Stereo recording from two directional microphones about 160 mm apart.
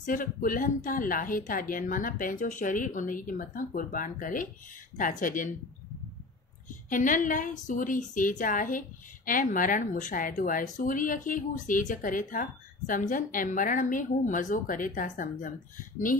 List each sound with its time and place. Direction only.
0.0 s a woman's voice: 60° left (ahead or behind)
6.7 s a woman's voice: 55° left (ahead or behind)